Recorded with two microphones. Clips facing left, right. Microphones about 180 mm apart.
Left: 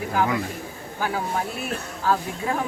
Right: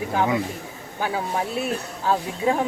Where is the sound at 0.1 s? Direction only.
20° right (ahead or behind).